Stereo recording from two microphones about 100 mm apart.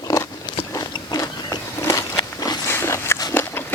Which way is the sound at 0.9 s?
40° left (ahead or behind).